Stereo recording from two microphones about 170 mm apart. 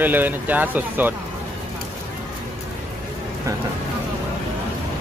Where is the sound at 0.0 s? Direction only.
10° right (ahead or behind).